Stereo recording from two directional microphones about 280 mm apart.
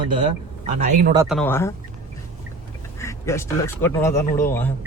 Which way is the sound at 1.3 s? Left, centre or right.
Centre.